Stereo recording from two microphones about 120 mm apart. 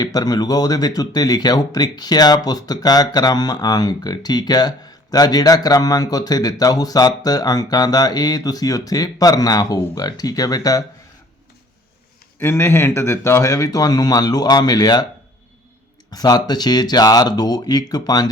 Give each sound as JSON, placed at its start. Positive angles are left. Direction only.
{"t": 0.0, "sound": "speech", "side_deg": 35}
{"t": 12.4, "sound": "speech", "side_deg": 20}
{"t": 16.0, "sound": "speech", "side_deg": 35}